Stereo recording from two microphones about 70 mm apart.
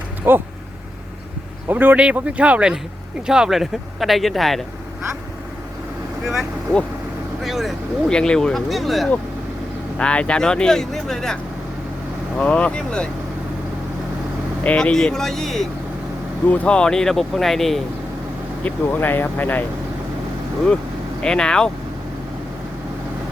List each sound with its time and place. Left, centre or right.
0.3 s speech: right
1.6 s a man's voice: right
2.0 s speech: centre
7.4 s speech: centre
8.1 s speech: centre
10.0 s speech: centre
12.4 s speech: centre
14.6 s speech: centre
14.9 s speech: centre
18.6 s speech: left
21.2 s speech: centre